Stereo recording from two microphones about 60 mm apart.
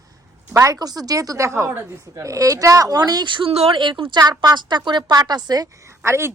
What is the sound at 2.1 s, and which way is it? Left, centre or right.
Speech, right.